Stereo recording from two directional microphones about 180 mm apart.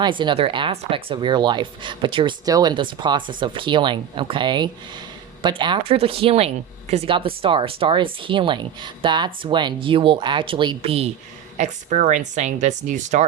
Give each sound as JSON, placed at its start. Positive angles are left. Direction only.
{"t": 0.0, "sound": "speech", "side_deg": -25}
{"t": 11.5, "sound": "speech", "side_deg": -45}